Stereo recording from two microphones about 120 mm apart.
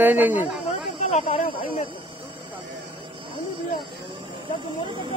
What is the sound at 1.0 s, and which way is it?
Speech, 65° left (ahead or behind).